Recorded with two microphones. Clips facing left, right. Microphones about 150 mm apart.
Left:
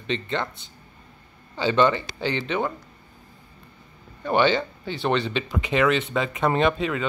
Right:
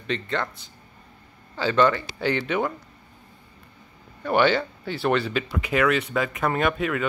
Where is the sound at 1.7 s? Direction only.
20° left (ahead or behind).